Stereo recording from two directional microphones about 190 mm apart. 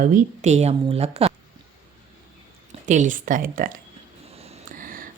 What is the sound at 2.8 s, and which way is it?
Speech, 40° right (ahead or behind).